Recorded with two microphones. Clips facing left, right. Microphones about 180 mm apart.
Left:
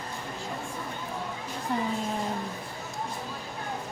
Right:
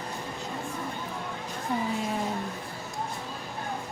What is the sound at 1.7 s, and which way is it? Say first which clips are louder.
Music: even; centre (ahead or behind).